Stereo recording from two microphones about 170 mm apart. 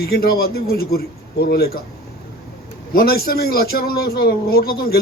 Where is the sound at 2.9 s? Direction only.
60° left (ahead or behind).